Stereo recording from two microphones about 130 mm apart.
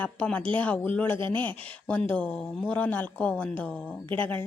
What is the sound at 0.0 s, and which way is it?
A woman's voice, 10° left (ahead or behind).